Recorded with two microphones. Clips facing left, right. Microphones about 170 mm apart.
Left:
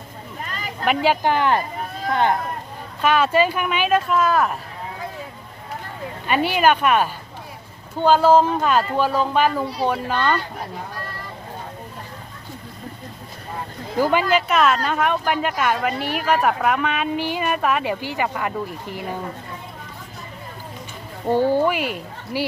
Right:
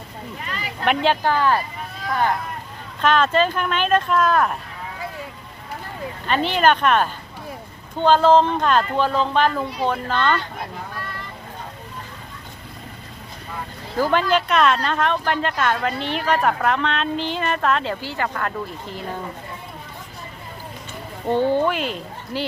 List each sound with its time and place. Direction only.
0.4 s a sound: 45° left (ahead or behind)
0.9 s speech: 10° left (ahead or behind)
3.0 s speech: 10° left (ahead or behind)
6.2 s speech: 10° left (ahead or behind)
13.9 s speech: 10° left (ahead or behind)
21.2 s speech: 10° left (ahead or behind)